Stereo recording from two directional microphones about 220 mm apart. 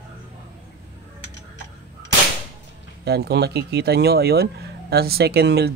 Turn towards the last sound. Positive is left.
turn(degrees=-50)  # may be behind; listen again after turning